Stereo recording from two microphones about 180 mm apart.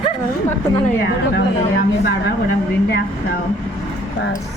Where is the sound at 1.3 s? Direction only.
65° left (ahead or behind).